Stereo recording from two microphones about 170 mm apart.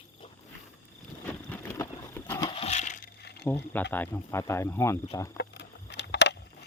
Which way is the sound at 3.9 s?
15° left (ahead or behind).